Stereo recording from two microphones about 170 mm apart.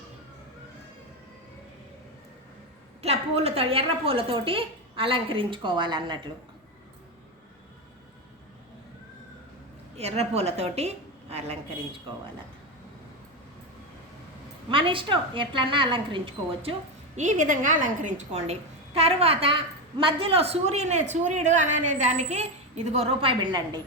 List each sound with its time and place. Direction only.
3.0 s a woman's voice: 40° right (ahead or behind)
10.0 s a woman's voice: 40° right (ahead or behind)
14.7 s a woman's voice: 30° right (ahead or behind)
17.2 s a woman's voice: 45° right (ahead or behind); by 23.8 s 25° right (ahead or behind)